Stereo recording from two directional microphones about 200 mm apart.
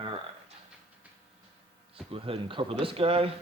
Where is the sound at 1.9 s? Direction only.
30° right (ahead or behind).